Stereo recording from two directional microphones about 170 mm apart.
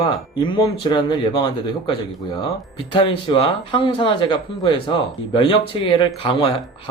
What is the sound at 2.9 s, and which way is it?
Speech, 30° left (ahead or behind).